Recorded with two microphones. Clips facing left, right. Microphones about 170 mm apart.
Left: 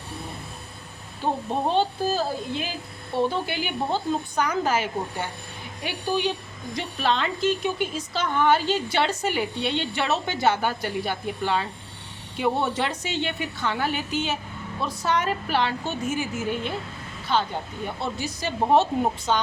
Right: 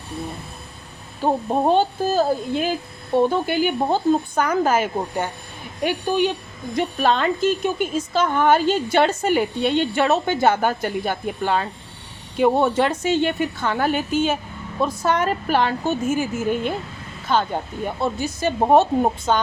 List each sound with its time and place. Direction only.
1.2 s a woman's voice: 45° right (ahead or behind)